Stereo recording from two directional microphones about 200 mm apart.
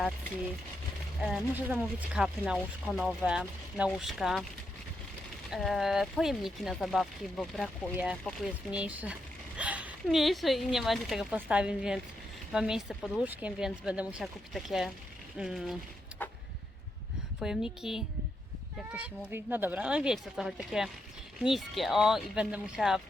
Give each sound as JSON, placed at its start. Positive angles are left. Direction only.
{"t": 1.2, "sound": "speech", "side_deg": -5}
{"t": 5.5, "sound": "speech", "side_deg": 0}
{"t": 17.4, "sound": "speech", "side_deg": 0}